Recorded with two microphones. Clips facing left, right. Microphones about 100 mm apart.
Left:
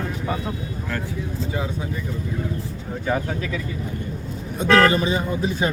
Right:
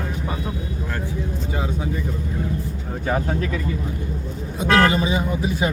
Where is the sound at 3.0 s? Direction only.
35° right (ahead or behind).